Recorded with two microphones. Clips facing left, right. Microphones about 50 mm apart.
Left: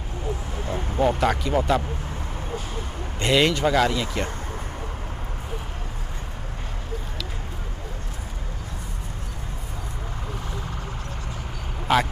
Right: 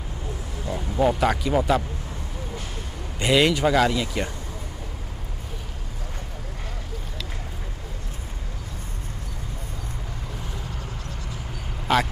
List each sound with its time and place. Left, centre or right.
0.6 s vehicle: left
1.0 s speech: centre
3.2 s speech: centre
11.9 s a man's voice: centre